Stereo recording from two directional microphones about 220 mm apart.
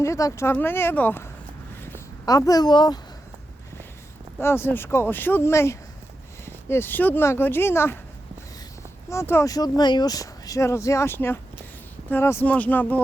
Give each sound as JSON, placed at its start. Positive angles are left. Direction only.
{"t": 0.0, "sound": "speech", "side_deg": 15}
{"t": 1.7, "sound": "a sound", "side_deg": 10}
{"t": 4.4, "sound": "speech", "side_deg": 10}
{"t": 9.0, "sound": "speech", "side_deg": 10}